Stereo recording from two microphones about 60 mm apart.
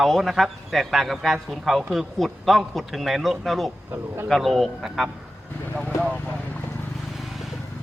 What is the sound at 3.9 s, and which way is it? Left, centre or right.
Speech, right.